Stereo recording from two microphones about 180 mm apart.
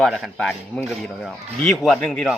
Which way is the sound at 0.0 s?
Centre (ahead or behind).